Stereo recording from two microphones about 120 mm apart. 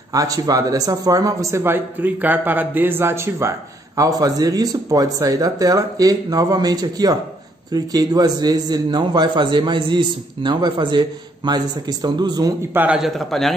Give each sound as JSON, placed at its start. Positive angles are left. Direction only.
{"t": 0.1, "sound": "a man's voice", "side_deg": -30}
{"t": 12.7, "sound": "a man's voice", "side_deg": -15}
{"t": 13.0, "sound": "a man's voice", "side_deg": 0}